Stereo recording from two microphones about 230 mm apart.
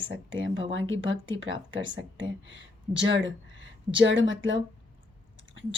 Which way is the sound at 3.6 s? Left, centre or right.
Right.